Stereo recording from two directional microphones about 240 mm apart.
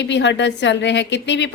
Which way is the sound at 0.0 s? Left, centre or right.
Left.